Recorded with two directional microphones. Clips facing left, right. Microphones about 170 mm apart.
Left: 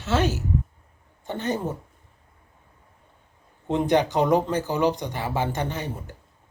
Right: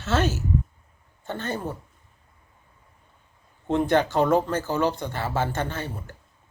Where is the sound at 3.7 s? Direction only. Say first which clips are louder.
Even; 15° left (ahead or behind).